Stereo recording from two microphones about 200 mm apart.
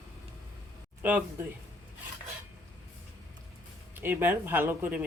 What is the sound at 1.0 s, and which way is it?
Speech, 10° right (ahead or behind).